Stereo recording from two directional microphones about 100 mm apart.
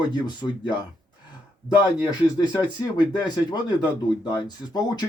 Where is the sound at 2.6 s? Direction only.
45° left (ahead or behind).